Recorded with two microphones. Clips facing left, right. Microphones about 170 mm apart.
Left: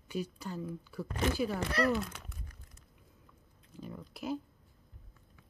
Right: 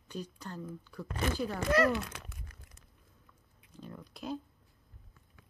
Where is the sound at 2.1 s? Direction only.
90° right.